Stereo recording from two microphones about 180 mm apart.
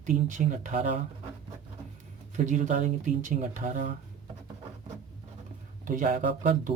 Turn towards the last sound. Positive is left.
turn(degrees=-45)  # may be behind; listen again after turning